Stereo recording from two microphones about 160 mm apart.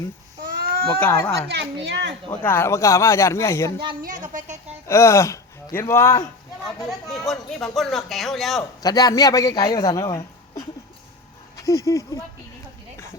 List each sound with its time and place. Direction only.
0.5 s a sound: 70° right (ahead or behind)
0.9 s speech: 15° left (ahead or behind)
1.8 s a child's voice: 90° right
2.3 s speech: 10° left (ahead or behind)
4.0 s a woman's voice: 55° right (ahead or behind)
4.9 s speech: 15° left (ahead or behind)
6.8 s speech: centre (ahead or behind)
8.8 s a man's voice: 25° left (ahead or behind)